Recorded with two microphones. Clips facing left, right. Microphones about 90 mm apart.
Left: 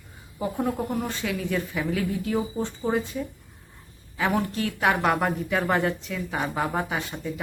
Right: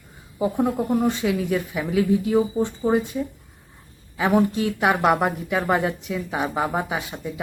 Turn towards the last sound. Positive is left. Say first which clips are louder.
# right 2 dB
turn(degrees=-10)  # may be behind; listen again after turning